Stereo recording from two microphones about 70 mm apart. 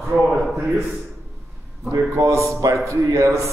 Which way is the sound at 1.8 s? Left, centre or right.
Right.